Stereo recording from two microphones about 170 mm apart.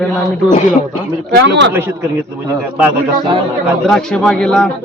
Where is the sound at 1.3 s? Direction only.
90° right.